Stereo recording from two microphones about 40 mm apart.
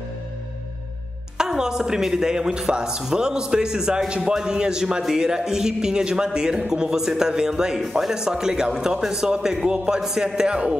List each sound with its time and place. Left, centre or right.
1.4 s a woman's voice: centre